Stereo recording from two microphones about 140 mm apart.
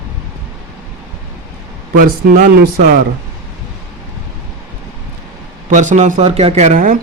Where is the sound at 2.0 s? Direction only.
90° right.